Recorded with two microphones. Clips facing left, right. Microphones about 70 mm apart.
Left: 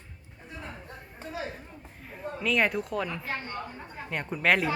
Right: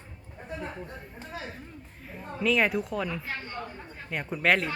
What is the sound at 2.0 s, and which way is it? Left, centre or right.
A woman's voice, centre.